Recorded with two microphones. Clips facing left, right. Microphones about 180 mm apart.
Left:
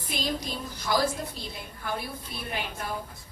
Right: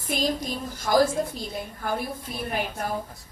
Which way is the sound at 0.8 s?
45° right (ahead or behind).